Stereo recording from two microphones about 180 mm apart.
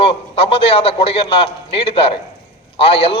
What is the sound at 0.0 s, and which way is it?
A man's voice, 30° left (ahead or behind).